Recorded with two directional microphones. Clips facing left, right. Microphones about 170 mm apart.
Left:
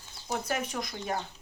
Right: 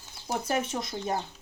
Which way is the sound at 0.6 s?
25° right (ahead or behind).